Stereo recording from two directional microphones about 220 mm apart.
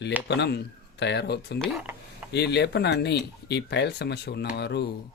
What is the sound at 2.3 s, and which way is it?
Speech, 50° left (ahead or behind).